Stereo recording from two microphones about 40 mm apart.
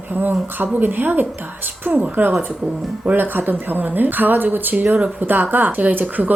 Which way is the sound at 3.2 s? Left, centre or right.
Right.